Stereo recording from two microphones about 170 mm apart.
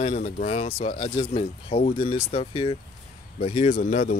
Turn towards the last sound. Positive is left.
turn(degrees=50)  # may be behind; listen again after turning